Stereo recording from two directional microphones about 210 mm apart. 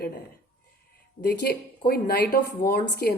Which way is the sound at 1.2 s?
50° left (ahead or behind).